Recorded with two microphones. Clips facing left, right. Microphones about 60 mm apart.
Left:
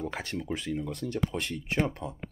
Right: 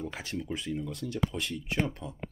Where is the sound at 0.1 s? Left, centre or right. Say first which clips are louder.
Left 2 dB; left.